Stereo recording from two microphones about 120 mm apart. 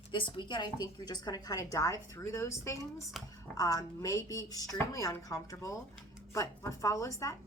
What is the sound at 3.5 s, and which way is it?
Speech, 30° left (ahead or behind).